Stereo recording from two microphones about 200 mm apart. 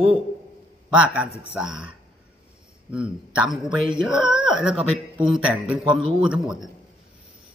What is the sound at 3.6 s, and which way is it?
Speech, 25° right (ahead or behind).